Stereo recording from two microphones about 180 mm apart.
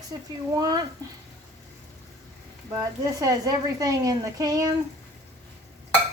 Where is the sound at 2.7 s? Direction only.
20° right (ahead or behind).